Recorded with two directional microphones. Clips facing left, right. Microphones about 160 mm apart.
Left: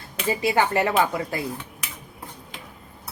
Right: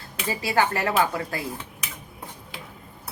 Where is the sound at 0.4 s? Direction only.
20° left (ahead or behind).